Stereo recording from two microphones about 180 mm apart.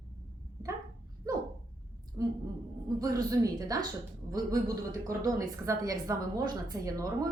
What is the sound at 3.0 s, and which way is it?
A woman's voice, 20° right (ahead or behind).